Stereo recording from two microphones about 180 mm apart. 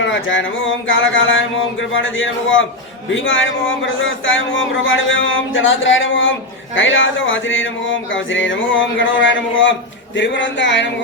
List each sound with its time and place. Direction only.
0.0 s a man's voice: 90° left